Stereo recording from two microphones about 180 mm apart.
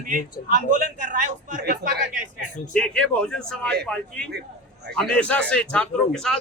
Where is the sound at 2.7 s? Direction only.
5° left (ahead or behind).